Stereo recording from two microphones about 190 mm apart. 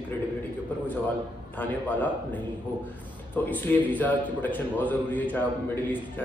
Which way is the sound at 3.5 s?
10° left (ahead or behind).